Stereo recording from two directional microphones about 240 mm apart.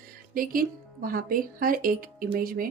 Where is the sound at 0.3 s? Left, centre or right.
Right.